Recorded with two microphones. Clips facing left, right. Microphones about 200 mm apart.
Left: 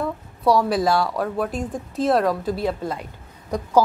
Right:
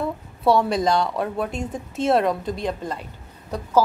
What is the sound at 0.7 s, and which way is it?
A woman's voice, 5° left (ahead or behind).